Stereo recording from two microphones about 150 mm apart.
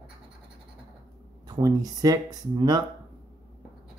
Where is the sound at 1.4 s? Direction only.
25° right (ahead or behind).